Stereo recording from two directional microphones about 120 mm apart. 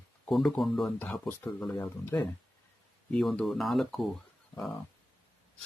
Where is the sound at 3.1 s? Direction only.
5° left (ahead or behind).